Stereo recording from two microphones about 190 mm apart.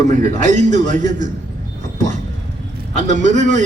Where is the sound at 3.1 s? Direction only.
40° right (ahead or behind).